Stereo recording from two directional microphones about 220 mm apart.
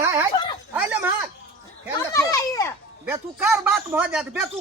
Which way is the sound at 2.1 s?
15° left (ahead or behind).